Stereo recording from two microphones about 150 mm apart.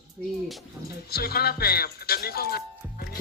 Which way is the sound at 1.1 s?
90° left.